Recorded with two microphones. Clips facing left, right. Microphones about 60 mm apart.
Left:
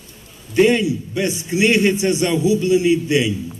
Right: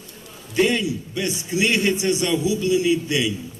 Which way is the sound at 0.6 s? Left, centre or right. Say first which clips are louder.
Left 5 dB; left.